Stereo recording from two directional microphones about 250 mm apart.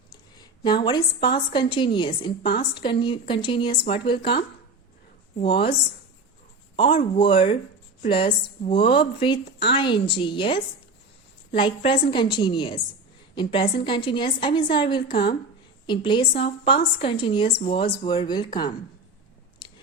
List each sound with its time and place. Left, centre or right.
0.6 s a woman's voice: centre
6.7 s a woman's voice: left
19.6 s chewing: centre